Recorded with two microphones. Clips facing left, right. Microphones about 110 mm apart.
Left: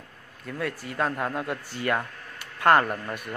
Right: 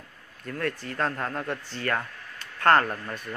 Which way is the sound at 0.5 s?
10° left (ahead or behind).